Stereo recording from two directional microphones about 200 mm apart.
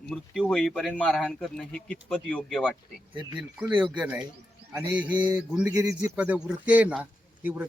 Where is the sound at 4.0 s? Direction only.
5° right (ahead or behind).